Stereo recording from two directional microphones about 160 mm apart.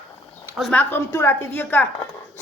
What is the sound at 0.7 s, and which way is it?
A woman's voice, 10° left (ahead or behind).